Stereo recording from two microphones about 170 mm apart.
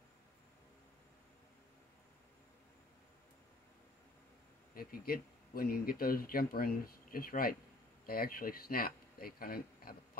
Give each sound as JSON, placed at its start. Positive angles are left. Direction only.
{"t": 4.7, "sound": "speech", "side_deg": 60}